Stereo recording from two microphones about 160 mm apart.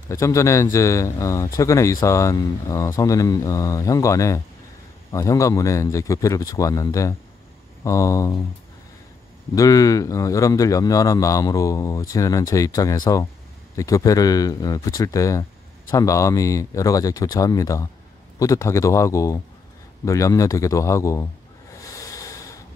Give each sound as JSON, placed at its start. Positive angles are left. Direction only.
{"t": 0.1, "sound": "speech", "side_deg": 20}
{"t": 9.6, "sound": "speech", "side_deg": 20}
{"t": 21.8, "sound": "a sound", "side_deg": 20}